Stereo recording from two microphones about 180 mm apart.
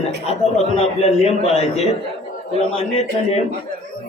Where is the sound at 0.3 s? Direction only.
35° left (ahead or behind).